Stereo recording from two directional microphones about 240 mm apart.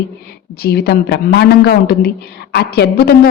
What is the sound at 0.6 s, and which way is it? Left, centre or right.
A woman's voice, left.